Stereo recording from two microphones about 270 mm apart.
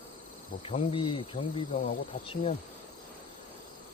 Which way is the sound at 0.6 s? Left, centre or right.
Centre.